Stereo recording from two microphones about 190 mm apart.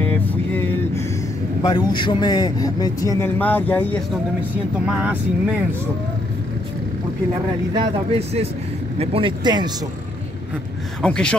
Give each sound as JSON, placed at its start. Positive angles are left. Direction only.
{"t": 0.3, "sound": "vehicle", "side_deg": 10}
{"t": 1.6, "sound": "a man's voice", "side_deg": 20}
{"t": 4.8, "sound": "speech", "side_deg": -5}
{"t": 7.7, "sound": "speech", "side_deg": -30}
{"t": 11.0, "sound": "speech", "side_deg": 5}